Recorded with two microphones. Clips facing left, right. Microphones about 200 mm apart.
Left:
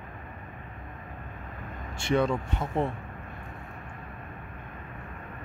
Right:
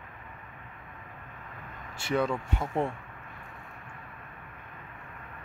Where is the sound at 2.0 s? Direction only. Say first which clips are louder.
Left 3 dB; 5° right (ahead or behind).